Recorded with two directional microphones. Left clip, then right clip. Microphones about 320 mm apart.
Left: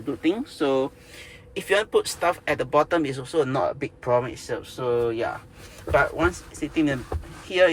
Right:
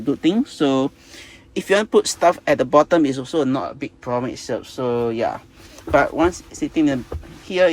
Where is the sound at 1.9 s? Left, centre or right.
Centre.